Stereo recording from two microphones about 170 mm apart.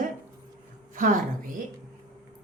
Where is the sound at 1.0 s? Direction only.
50° right (ahead or behind).